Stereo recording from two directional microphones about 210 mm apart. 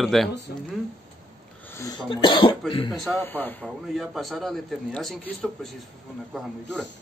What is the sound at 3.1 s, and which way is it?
Speech, 10° left (ahead or behind).